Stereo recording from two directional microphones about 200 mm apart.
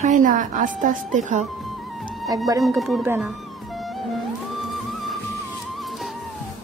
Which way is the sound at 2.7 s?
Centre (ahead or behind).